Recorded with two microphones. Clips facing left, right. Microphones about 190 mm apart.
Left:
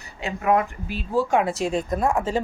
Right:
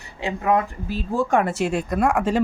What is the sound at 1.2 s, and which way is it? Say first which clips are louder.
Speech: even; 55° right (ahead or behind).